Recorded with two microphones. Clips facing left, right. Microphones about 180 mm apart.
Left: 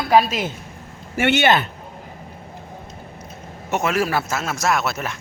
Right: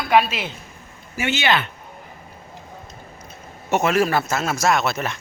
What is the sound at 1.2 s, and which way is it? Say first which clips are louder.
Speech: left 5 dB; 60° left (ahead or behind).